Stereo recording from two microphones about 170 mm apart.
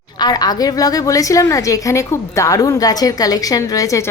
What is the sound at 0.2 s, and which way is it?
A woman's voice, 25° left (ahead or behind).